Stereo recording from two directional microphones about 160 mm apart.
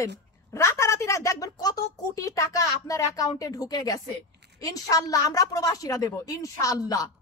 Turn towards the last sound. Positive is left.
turn(degrees=20)  # may be behind; listen again after turning